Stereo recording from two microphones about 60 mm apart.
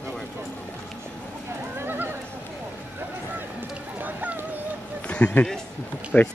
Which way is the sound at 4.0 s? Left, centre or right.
Right.